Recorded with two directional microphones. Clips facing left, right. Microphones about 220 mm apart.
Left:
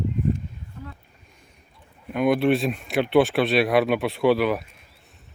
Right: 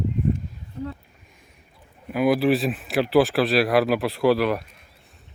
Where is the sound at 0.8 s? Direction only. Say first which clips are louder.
Right 9 dB; 30° right (ahead or behind).